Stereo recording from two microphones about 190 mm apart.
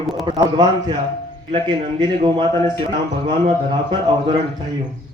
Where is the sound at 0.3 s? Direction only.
20° right (ahead or behind).